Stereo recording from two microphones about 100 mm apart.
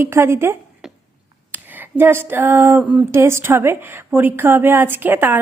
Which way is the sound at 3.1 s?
25° right (ahead or behind).